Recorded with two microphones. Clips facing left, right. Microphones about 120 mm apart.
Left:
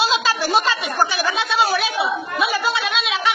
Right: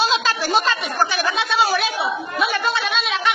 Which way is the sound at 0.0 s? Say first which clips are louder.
Left 1 dB; centre (ahead or behind).